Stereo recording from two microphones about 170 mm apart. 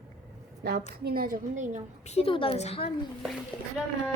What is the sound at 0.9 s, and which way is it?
Speech, 65° right (ahead or behind).